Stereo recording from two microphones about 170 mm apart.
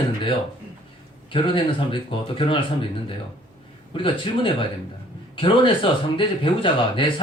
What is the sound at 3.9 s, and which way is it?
Speech, 30° left (ahead or behind).